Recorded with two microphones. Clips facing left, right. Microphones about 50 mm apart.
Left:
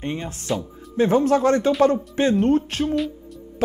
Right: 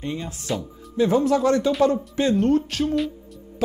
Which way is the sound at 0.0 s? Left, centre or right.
Left.